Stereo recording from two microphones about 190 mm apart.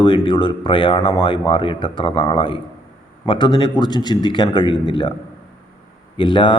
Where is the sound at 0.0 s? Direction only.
25° left (ahead or behind).